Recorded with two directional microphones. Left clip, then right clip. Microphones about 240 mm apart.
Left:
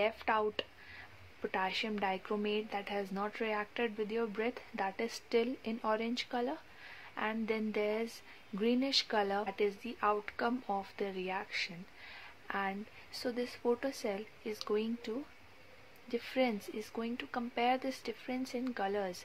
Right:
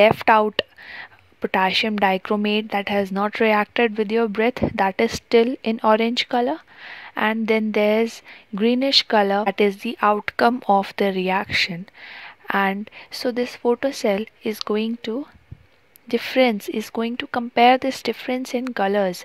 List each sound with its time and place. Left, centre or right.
0.0 s speech: right